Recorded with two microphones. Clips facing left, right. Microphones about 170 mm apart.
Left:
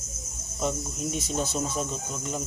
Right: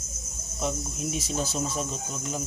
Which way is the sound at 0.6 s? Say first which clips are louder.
Left 1 dB; centre (ahead or behind).